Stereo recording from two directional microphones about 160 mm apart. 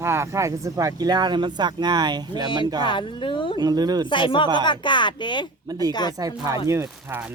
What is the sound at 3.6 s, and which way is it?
Speech, 25° right (ahead or behind).